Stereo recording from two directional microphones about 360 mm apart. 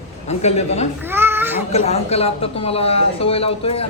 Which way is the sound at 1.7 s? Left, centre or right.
Centre.